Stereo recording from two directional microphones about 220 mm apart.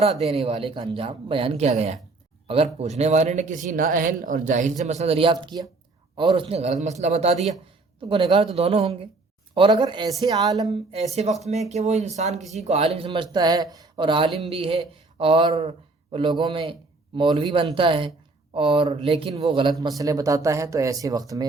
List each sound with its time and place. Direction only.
0.0 s a woman's voice: 30° right (ahead or behind)
7.3 s a man's voice: centre (ahead or behind)
8.0 s a woman's voice: 20° right (ahead or behind)
11.1 s a woman's voice: 30° right (ahead or behind)